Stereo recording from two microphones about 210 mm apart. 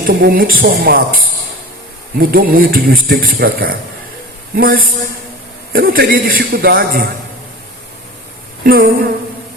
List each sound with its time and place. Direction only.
0.1 s a man's voice: 45° right (ahead or behind)
8.6 s a man's voice: 45° right (ahead or behind)